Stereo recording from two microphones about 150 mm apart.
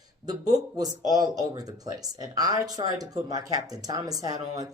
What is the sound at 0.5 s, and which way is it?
Speech, 25° right (ahead or behind).